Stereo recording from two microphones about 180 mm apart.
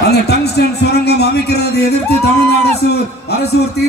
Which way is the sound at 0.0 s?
65° left (ahead or behind).